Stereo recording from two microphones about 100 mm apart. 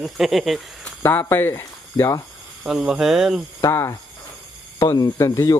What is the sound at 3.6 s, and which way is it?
Speech, 30° left (ahead or behind).